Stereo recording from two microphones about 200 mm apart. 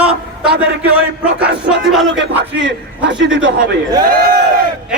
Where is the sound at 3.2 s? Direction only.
75° right (ahead or behind).